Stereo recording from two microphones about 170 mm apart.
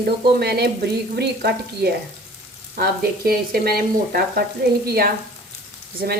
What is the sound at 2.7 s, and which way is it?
Frying, 60° right (ahead or behind).